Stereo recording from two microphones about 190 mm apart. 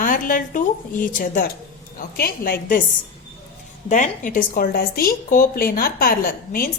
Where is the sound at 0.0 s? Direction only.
45° left (ahead or behind).